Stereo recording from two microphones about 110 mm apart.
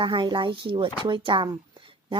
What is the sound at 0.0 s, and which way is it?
A woman's voice, 40° right (ahead or behind).